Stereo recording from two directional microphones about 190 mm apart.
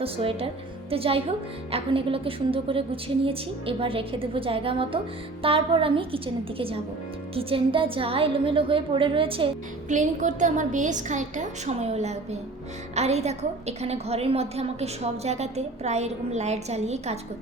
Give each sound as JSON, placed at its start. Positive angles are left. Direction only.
{"t": 0.0, "sound": "a woman's voice", "side_deg": -30}
{"t": 9.9, "sound": "a woman's voice", "side_deg": -40}